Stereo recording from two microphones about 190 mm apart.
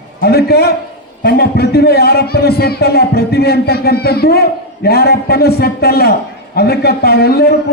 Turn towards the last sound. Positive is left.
turn(degrees=55)  # may be behind; listen again after turning